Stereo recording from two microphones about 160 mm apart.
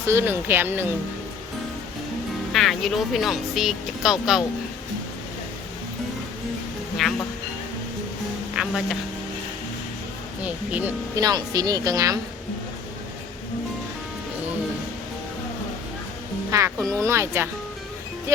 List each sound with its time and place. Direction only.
0.0 s speech: 15° right (ahead or behind)
2.5 s speech: centre (ahead or behind)
7.0 s speech: centre (ahead or behind)
8.5 s a sound: centre (ahead or behind)
10.4 s speech: 10° right (ahead or behind)
11.2 s a woman's voice: 25° right (ahead or behind)
16.5 s speech: 15° right (ahead or behind)